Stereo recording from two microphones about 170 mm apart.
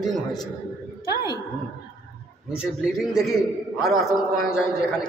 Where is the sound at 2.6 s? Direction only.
Centre (ahead or behind).